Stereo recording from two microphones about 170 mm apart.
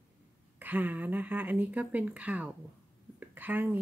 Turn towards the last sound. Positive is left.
turn(degrees=-10)  # may be behind; listen again after turning